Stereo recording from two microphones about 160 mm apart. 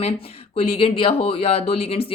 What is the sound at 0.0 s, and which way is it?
Speech, 40° left (ahead or behind).